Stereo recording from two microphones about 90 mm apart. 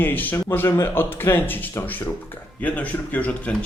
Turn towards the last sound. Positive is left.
turn(degrees=15)  # may be behind; listen again after turning